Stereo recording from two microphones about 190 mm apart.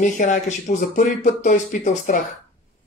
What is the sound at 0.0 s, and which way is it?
Speech, 40° left (ahead or behind).